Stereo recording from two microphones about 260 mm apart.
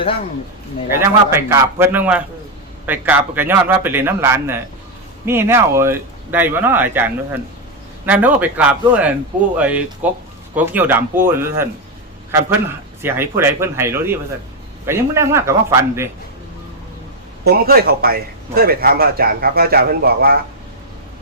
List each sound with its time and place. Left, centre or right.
0.9 s speech: centre
13.0 s speech: centre
17.4 s a man's voice: right